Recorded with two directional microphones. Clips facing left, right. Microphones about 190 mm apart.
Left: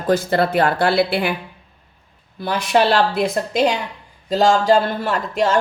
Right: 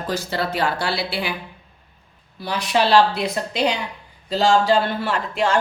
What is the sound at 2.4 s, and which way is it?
A woman's voice, 50° left (ahead or behind).